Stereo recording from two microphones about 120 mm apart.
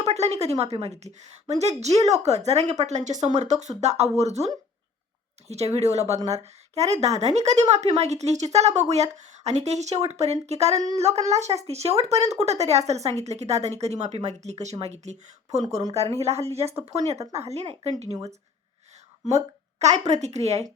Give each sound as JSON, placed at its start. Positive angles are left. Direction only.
{"t": 0.0, "sound": "speech", "side_deg": -65}
{"t": 19.8, "sound": "speech", "side_deg": -70}